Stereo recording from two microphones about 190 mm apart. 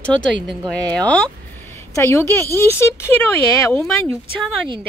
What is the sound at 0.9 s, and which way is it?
Speech, 5° left (ahead or behind).